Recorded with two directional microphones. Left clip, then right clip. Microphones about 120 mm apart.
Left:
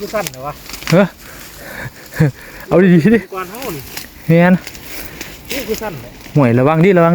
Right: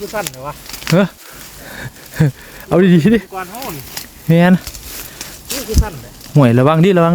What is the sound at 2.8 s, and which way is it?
Speech, 50° right (ahead or behind).